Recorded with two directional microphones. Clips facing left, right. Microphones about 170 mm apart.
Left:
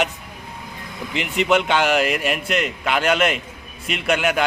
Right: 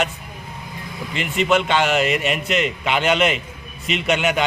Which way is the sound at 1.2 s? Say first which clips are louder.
Even; 15° left (ahead or behind).